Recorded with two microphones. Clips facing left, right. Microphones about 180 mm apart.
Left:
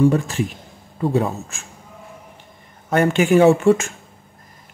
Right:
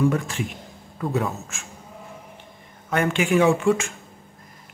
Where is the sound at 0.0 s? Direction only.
30° left (ahead or behind).